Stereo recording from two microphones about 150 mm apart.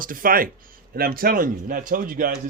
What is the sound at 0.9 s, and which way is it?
A man's voice, 85° right.